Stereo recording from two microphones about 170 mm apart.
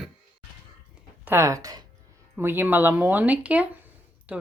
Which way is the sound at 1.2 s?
15° right (ahead or behind).